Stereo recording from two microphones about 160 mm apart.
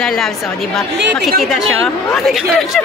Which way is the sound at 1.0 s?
90° right.